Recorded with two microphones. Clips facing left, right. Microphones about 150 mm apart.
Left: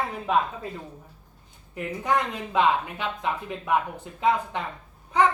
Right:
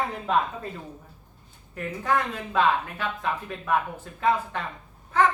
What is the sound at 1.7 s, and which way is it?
Speech, 15° left (ahead or behind).